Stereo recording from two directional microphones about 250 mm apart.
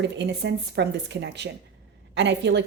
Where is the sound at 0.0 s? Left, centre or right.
Right.